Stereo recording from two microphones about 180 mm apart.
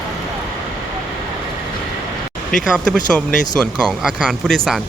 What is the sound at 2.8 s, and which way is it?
Speech, 5° left (ahead or behind).